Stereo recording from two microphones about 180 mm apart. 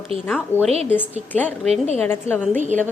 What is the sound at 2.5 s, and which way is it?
Speech, 40° right (ahead or behind).